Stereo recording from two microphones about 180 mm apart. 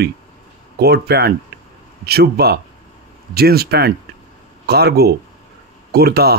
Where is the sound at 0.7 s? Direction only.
65° right (ahead or behind).